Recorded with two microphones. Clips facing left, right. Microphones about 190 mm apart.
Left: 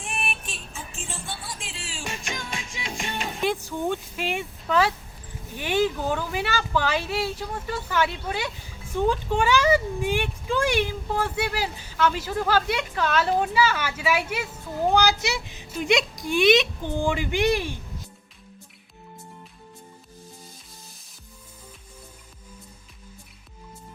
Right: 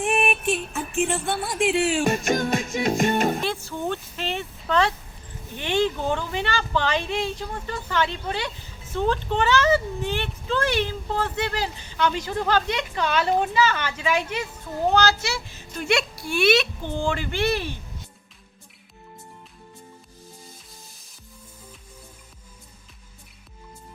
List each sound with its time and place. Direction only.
0.0 s music: 60° right (ahead or behind)
2.0 s music: 45° right (ahead or behind)
3.4 s speech: 15° left (ahead or behind)